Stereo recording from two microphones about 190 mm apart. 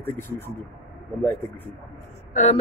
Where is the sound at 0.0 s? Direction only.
10° left (ahead or behind).